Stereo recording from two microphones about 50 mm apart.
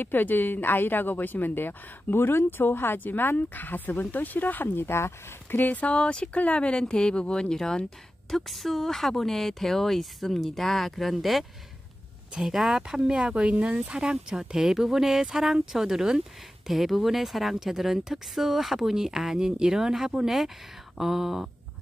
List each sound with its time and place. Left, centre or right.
0.0 s a woman's voice: left
5.6 s speech: left; by 7.8 s centre
8.5 s speech: centre
13.2 s speech: right
13.9 s speech: centre